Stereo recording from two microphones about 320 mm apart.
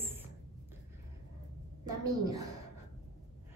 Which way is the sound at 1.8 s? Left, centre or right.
Centre.